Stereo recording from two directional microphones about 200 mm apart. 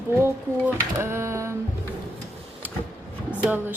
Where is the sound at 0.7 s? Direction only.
10° right (ahead or behind).